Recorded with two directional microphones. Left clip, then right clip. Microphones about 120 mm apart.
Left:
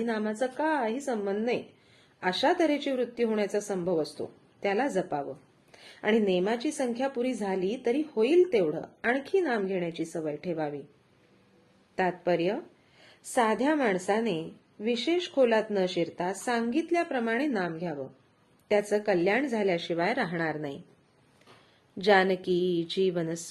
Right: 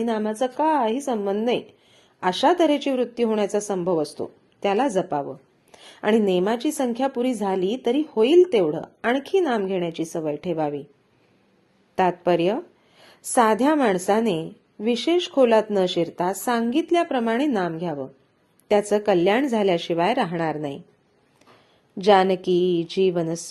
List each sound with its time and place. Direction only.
0.0 s a woman's voice: 40° right (ahead or behind)
11.9 s a woman's voice: 50° right (ahead or behind)
22.0 s a woman's voice: 35° right (ahead or behind)